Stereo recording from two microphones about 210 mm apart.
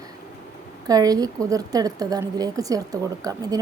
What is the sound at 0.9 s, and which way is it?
A woman's voice, 15° right (ahead or behind).